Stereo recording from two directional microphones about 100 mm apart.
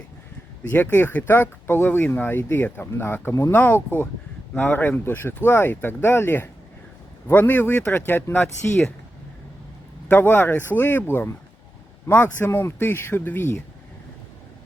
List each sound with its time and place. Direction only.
0.7 s speech: 20° left (ahead or behind)
10.1 s speech: 20° left (ahead or behind)